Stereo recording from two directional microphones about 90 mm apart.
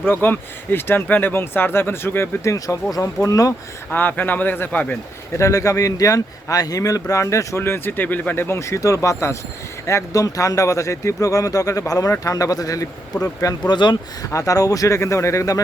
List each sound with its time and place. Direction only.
0.0 s speech: 25° left (ahead or behind); by 3.5 s 40° left (ahead or behind)
3.9 s speech: 20° left (ahead or behind)
5.4 s speech: 35° left (ahead or behind)
13.7 s speech: 55° left (ahead or behind)
14.3 s speech: 40° left (ahead or behind)